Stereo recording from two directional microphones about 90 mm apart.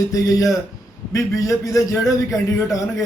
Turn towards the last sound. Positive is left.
turn(degrees=40)  # may be behind; listen again after turning